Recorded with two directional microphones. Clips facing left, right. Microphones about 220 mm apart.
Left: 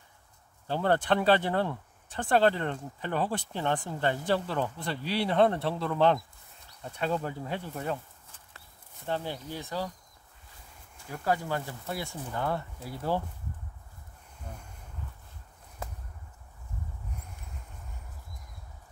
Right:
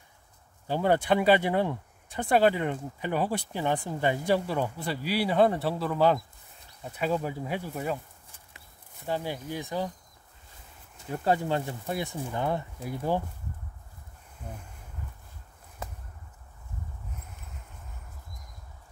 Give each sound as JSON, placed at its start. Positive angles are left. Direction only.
{"t": 0.7, "sound": "speech", "side_deg": -10}
{"t": 11.0, "sound": "speech", "side_deg": -25}